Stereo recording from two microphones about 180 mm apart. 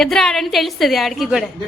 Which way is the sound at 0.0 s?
Centre (ahead or behind).